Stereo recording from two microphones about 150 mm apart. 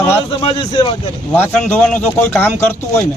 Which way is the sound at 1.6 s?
10° left (ahead or behind).